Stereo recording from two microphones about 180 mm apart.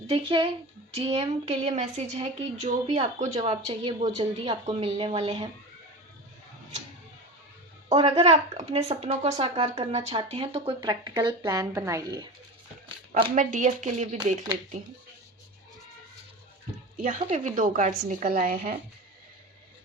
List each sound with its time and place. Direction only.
0.1 s speech: 30° right (ahead or behind)
7.9 s speech: 30° right (ahead or behind)
13.3 s a woman's voice: 45° right (ahead or behind)
17.0 s a woman's voice: 45° right (ahead or behind)